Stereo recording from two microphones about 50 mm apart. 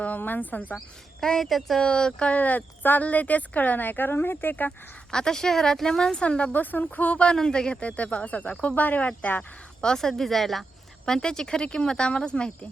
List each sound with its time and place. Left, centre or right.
0.2 s speech: left
1.2 s speech: centre
1.8 s speech: centre
2.3 s speech: left
5.1 s speech: centre
6.5 s speech: left
7.3 s speech: centre; by 9.4 s left
9.8 s speech: centre
11.0 s speech: centre